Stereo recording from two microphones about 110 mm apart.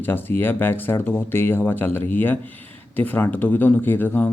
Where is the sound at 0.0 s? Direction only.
20° left (ahead or behind).